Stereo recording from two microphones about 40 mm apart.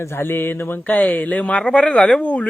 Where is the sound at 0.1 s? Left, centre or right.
Left.